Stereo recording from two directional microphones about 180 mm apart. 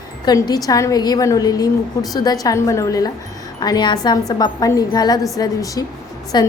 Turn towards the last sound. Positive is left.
turn(degrees=25)  # may be behind; listen again after turning